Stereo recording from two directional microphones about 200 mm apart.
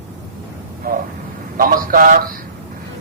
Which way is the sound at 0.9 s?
45° right (ahead or behind).